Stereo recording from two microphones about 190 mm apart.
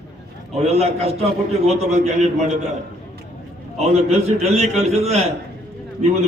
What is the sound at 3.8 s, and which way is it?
A man's voice, 35° right (ahead or behind).